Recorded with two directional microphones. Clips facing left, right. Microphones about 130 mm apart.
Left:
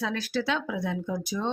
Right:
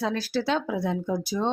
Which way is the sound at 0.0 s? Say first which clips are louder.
Right 2 dB; 35° right (ahead or behind).